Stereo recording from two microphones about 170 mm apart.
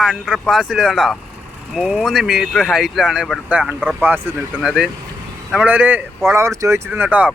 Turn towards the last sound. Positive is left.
turn(degrees=-10)  # may be behind; listen again after turning